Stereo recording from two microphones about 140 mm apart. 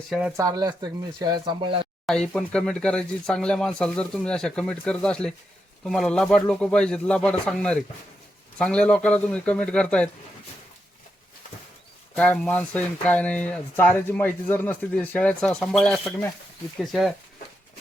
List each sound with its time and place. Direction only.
0.1 s speech: 5° right (ahead or behind)
0.3 s speech: 25° right (ahead or behind)
2.0 s speech: 5° left (ahead or behind)
12.1 s speech: 10° left (ahead or behind)